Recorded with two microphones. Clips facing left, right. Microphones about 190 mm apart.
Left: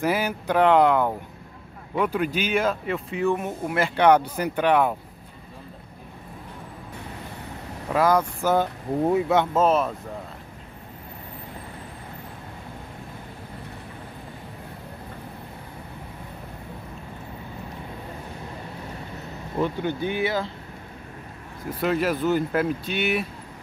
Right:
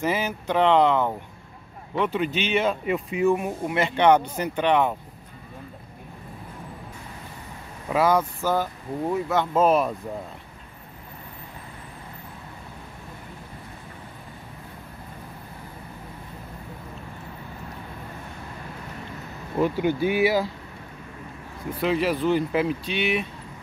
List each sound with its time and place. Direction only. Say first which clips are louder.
0.0 s speech: left 1 dB; 10° left (ahead or behind)
7.9 s speech: even; 5° right (ahead or behind)
8.4 s speech: left 3 dB; 20° left (ahead or behind)
9.6 s speech: right 3 dB; centre (ahead or behind)
19.6 s speech: right 3 dB; 10° right (ahead or behind)
21.6 s speech: even; centre (ahead or behind)
22.5 s speech: even; 5° right (ahead or behind)